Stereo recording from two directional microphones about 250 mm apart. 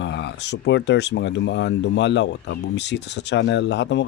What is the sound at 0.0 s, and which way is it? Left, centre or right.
Speech, left.